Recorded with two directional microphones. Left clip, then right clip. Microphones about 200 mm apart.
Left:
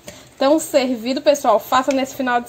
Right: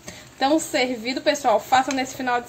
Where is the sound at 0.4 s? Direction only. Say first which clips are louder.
Left 5 dB; 25° left (ahead or behind).